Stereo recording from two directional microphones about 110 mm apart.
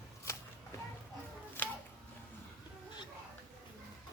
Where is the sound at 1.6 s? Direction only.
20° left (ahead or behind).